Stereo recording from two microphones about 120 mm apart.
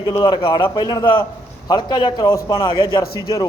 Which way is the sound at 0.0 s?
35° left (ahead or behind).